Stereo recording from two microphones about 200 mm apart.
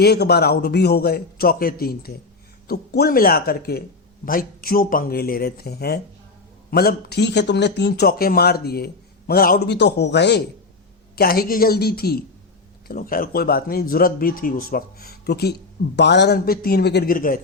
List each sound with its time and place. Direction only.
0.0 s speech: 55° left (ahead or behind)
11.1 s speech: 50° left (ahead or behind)